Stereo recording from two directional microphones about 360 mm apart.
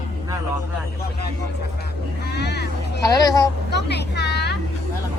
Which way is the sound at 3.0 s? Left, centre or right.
Centre.